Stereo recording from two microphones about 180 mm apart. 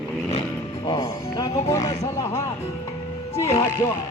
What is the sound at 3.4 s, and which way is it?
Music, 15° left (ahead or behind).